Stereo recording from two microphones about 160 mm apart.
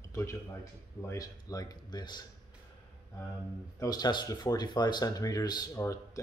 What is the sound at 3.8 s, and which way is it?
Speech, 25° left (ahead or behind).